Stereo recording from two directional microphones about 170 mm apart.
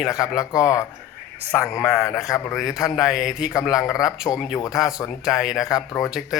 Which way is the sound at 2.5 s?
Centre (ahead or behind).